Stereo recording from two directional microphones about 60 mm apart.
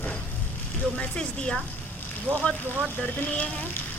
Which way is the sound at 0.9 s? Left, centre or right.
Centre.